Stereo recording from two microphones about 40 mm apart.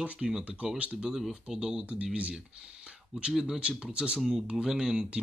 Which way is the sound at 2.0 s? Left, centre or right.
Right.